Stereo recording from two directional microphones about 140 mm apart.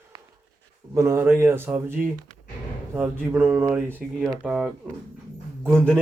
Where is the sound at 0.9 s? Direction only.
20° right (ahead or behind); by 4.7 s 5° right (ahead or behind).